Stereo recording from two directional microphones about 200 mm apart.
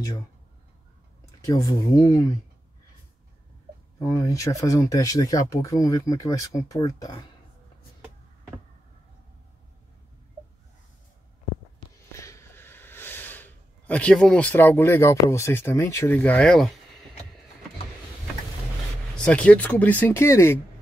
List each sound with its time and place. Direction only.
1.4 s speech: 15° left (ahead or behind)
4.0 s speech: 15° left (ahead or behind)
12.1 s a sound: 15° left (ahead or behind)
19.2 s speech: 5° left (ahead or behind)